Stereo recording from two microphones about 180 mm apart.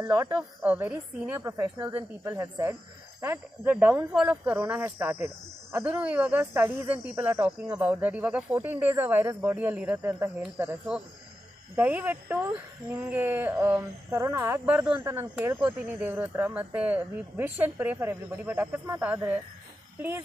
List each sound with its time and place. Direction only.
0.0 s speech: 15° right (ahead or behind)